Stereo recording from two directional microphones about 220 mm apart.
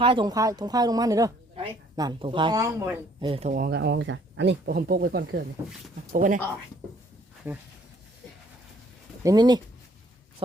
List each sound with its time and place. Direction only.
0.0 s a woman's voice: 20° right (ahead or behind)
3.5 s speech: 45° right (ahead or behind)
7.4 s a woman's voice: 10° right (ahead or behind)
9.2 s a woman's voice: 20° right (ahead or behind)